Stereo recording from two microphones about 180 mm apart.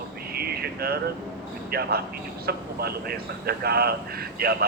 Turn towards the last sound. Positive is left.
turn(degrees=-60)  # may be behind; listen again after turning